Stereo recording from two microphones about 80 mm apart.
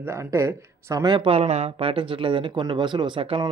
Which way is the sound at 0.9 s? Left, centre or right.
Right.